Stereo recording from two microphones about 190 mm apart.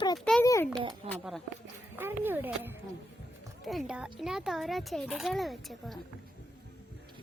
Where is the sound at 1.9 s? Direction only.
10° right (ahead or behind).